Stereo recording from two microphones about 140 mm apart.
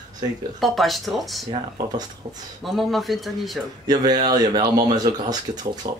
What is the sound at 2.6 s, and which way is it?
Speech, centre (ahead or behind).